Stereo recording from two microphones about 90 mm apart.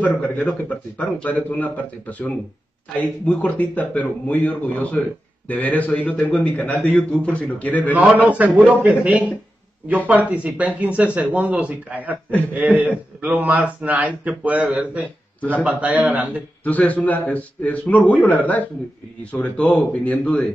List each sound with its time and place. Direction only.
0.1 s a man's voice: 20° left (ahead or behind)
8.2 s a man's voice: 15° right (ahead or behind)
16.6 s a man's voice: 15° left (ahead or behind)